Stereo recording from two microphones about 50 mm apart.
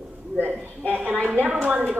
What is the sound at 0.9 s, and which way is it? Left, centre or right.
Speech, right.